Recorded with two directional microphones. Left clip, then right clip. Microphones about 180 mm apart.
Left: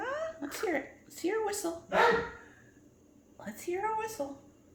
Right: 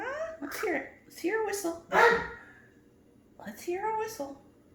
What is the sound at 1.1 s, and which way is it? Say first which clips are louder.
Speech: right 2 dB; 20° left (ahead or behind).